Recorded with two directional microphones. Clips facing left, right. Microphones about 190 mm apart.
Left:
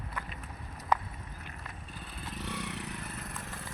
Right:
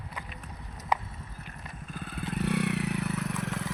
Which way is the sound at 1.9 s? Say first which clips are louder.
Right 10 dB; 55° right (ahead or behind).